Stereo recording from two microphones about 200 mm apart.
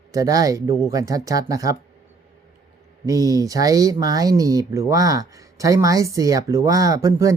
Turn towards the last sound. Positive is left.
turn(degrees=-15)  # may be behind; listen again after turning